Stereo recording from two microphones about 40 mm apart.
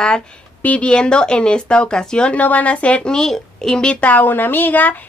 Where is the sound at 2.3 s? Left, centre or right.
Left.